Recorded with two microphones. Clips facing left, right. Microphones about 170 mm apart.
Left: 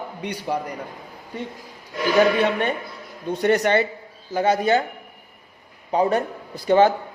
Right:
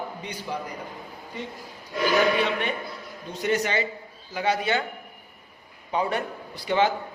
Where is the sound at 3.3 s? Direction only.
60° left (ahead or behind).